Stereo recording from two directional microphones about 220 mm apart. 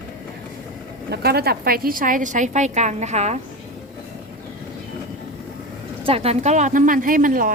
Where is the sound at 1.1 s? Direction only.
45° right (ahead or behind).